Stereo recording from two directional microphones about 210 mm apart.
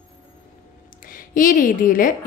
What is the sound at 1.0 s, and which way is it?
A woman's voice, 40° left (ahead or behind).